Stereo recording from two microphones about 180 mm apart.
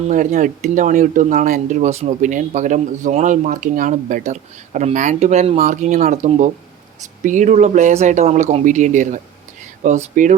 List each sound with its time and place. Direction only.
0.1 s speech: 45° right (ahead or behind)